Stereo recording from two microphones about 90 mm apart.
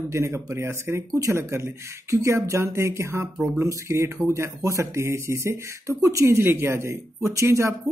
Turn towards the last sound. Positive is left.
turn(degrees=-35)  # may be behind; listen again after turning